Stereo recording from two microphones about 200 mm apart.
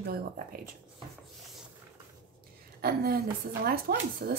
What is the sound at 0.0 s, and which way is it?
Speech, 45° right (ahead or behind).